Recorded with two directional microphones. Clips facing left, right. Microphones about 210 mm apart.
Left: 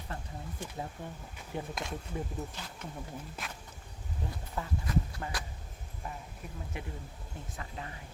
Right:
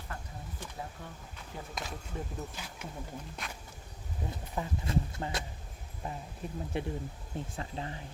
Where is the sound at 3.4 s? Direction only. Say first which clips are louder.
Right 1 dB; 5° left (ahead or behind).